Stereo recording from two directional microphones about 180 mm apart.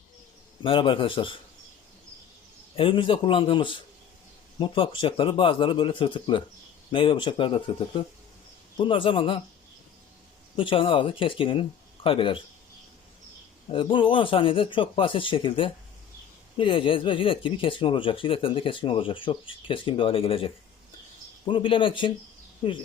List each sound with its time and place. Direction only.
0.6 s speech: 30° left (ahead or behind)
2.7 s speech: 30° left (ahead or behind)
10.6 s speech: 30° left (ahead or behind)
13.7 s speech: 30° left (ahead or behind)